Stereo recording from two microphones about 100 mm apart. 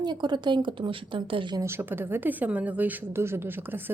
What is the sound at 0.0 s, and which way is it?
A woman's voice, 50° right (ahead or behind).